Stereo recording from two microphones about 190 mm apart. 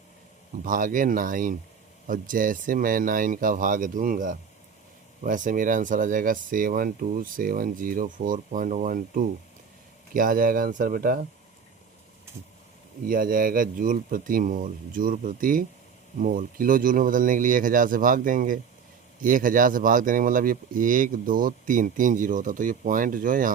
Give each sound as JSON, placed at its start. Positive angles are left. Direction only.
{"t": 0.6, "sound": "speech", "side_deg": -45}
{"t": 13.1, "sound": "speech", "side_deg": -45}